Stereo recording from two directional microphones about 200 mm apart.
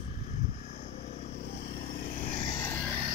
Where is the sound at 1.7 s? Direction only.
45° left (ahead or behind).